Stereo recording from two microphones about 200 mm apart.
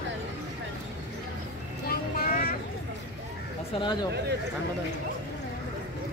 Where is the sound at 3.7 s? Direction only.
25° left (ahead or behind).